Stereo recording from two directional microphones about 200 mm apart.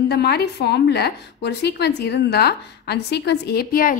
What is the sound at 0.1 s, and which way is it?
A woman's voice, 55° left (ahead or behind).